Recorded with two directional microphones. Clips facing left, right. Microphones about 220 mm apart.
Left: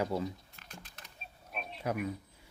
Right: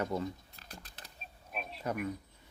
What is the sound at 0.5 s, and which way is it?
Typing, 35° right (ahead or behind).